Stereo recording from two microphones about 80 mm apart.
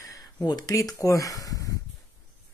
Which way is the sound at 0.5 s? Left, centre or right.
Left.